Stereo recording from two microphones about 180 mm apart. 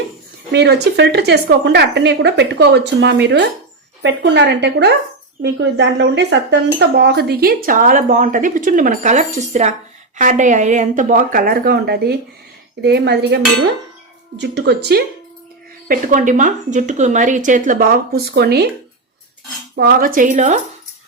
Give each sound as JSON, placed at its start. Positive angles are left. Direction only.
{"t": 0.5, "sound": "a woman's voice", "side_deg": -70}
{"t": 12.8, "sound": "dishes", "side_deg": -65}
{"t": 14.3, "sound": "a woman's voice", "side_deg": -75}
{"t": 15.9, "sound": "speech", "side_deg": -45}
{"t": 19.7, "sound": "speech", "side_deg": -60}